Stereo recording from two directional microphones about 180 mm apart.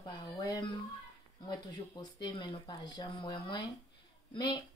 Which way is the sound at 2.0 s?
25° left (ahead or behind).